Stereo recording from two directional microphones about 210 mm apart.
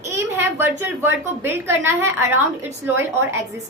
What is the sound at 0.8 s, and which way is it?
A woman's voice, 10° right (ahead or behind).